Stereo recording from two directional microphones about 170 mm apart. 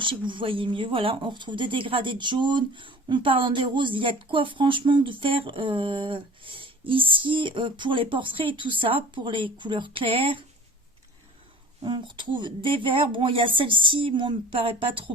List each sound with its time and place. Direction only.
0.0 s speech: 30° right (ahead or behind)
11.8 s speech: 25° right (ahead or behind)